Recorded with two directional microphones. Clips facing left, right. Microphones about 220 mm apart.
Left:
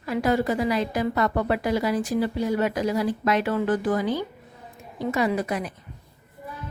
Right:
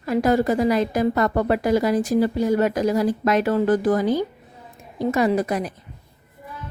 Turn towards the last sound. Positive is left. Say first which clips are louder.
# right 4 dB
turn(degrees=-40)  # may be behind; listen again after turning